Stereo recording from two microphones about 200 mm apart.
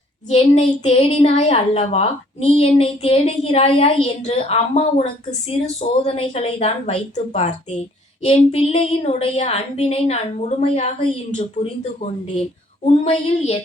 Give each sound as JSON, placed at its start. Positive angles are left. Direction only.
{"t": 0.3, "sound": "a woman's voice", "side_deg": 35}